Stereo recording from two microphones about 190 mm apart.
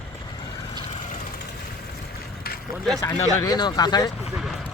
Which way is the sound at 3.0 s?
20° left (ahead or behind).